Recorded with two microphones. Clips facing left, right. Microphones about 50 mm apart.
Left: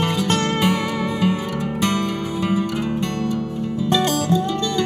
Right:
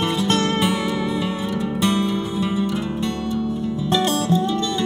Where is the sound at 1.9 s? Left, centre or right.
Left.